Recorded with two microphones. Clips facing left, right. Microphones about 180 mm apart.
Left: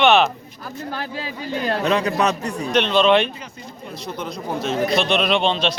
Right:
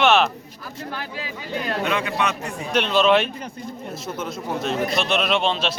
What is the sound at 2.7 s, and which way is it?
A man's voice, 5° right (ahead or behind).